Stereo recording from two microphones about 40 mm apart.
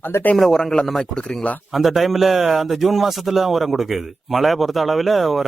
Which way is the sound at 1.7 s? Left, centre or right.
Centre.